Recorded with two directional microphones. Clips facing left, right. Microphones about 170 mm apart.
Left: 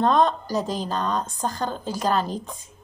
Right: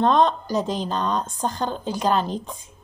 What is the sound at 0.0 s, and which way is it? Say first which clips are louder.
Speech: right 1 dB; 45° left (ahead or behind).